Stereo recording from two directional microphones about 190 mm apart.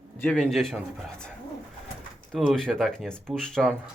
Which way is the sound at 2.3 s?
Centre (ahead or behind).